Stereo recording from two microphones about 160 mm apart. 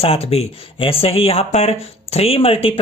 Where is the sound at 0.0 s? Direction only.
40° left (ahead or behind).